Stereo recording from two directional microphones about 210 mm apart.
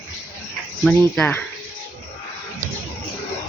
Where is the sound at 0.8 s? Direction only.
5° left (ahead or behind).